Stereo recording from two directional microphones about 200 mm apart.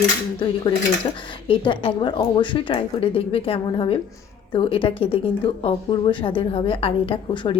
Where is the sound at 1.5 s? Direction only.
25° left (ahead or behind).